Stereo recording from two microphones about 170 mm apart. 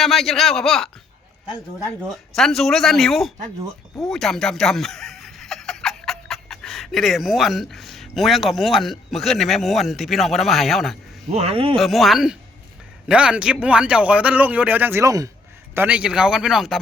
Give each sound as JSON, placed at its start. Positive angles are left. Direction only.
{"t": 0.0, "sound": "speech", "side_deg": 0}
{"t": 2.0, "sound": "speech", "side_deg": 5}
{"t": 11.3, "sound": "speech", "side_deg": -35}
{"t": 11.8, "sound": "speech", "side_deg": 0}